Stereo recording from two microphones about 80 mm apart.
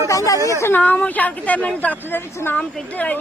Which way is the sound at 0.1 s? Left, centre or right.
Left.